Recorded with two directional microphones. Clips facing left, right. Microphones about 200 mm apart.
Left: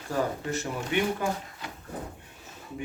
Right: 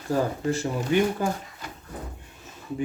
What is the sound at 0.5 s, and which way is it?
Speech, 30° right (ahead or behind).